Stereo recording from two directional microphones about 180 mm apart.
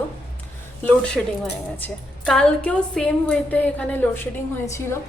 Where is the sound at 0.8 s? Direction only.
5° left (ahead or behind).